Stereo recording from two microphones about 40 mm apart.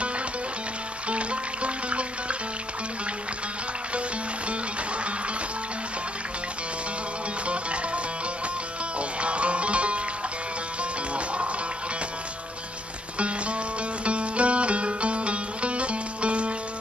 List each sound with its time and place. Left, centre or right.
1.0 s music: right
7.4 s music: right
14.0 s music: right